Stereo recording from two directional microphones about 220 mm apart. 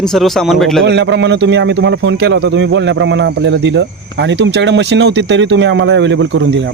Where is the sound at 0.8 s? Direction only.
55° right (ahead or behind).